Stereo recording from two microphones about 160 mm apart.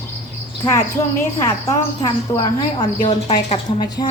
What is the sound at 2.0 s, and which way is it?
A woman's voice, 25° left (ahead or behind).